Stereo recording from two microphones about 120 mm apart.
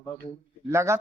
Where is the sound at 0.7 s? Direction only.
25° right (ahead or behind).